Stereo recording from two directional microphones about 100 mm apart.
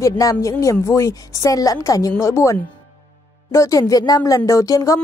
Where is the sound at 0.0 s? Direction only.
35° left (ahead or behind).